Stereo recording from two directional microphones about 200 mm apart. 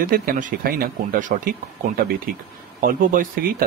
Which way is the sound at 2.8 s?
45° right (ahead or behind).